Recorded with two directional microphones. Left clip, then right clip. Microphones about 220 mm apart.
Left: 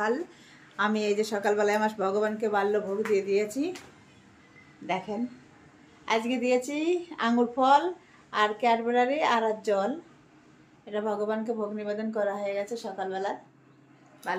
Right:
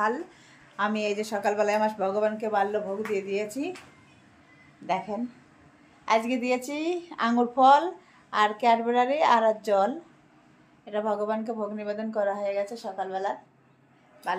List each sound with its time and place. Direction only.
0.7 s speech: centre (ahead or behind)
5.1 s a woman's voice: 15° right (ahead or behind)